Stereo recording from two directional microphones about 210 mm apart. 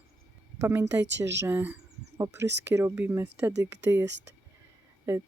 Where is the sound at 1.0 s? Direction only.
60° right (ahead or behind).